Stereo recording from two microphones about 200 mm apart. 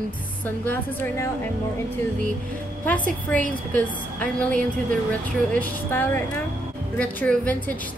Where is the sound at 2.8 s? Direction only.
5° left (ahead or behind).